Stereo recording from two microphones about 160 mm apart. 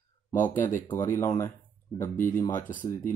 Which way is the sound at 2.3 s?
15° left (ahead or behind).